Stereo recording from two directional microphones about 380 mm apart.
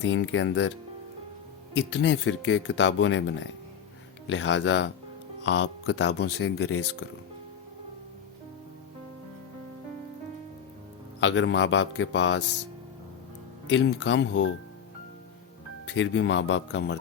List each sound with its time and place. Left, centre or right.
0.0 s speech: left
1.7 s speech: left
11.2 s speech: left
13.7 s speech: left
15.9 s speech: left